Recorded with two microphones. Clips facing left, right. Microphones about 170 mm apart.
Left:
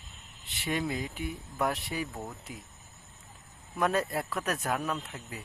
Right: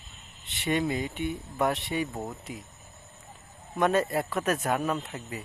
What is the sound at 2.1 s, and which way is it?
Speech, 20° right (ahead or behind).